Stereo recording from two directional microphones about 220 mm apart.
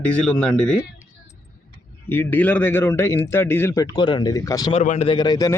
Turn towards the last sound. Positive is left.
turn(degrees=20)  # may be behind; listen again after turning